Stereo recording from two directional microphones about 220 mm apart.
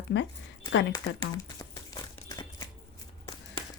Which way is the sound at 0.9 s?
15° left (ahead or behind).